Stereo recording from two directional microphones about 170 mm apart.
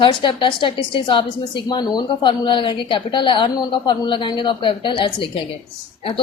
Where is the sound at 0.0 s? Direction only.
30° left (ahead or behind).